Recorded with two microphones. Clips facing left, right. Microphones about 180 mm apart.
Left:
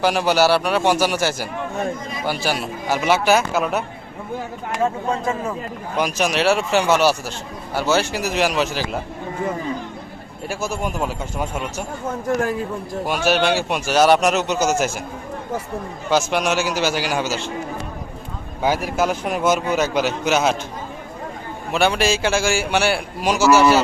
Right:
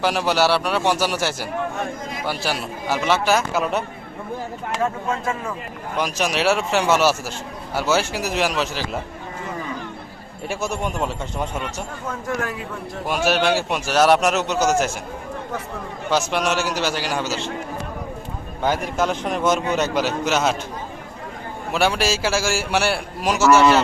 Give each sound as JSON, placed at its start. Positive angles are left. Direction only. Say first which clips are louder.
{"t": 0.0, "sound": "a man's voice", "louder": "left 2 dB", "side_deg": 0}
{"t": 6.0, "sound": "a man's voice", "louder": "left 2 dB", "side_deg": 0}
{"t": 10.5, "sound": "a man's voice", "louder": "even", "side_deg": 0}
{"t": 12.5, "sound": "a man's voice", "louder": "left 6 dB", "side_deg": 35}
{"t": 13.1, "sound": "a man's voice", "louder": "left 1 dB", "side_deg": 0}
{"t": 16.0, "sound": "a man's voice", "louder": "left 2 dB", "side_deg": 0}
{"t": 18.6, "sound": "a man's voice", "louder": "left 2 dB", "side_deg": 5}
{"t": 21.7, "sound": "a man's voice", "louder": "left 2 dB", "side_deg": -5}